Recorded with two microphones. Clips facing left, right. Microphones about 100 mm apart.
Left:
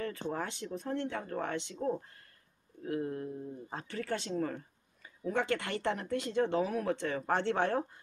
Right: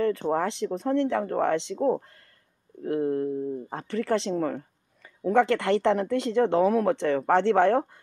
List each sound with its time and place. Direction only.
0.0 s speech: 80° right
1.8 s speech: 65° right (ahead or behind)
2.8 s speech: 55° right (ahead or behind)
3.8 s speech: 90° right; by 8.0 s 65° right (ahead or behind)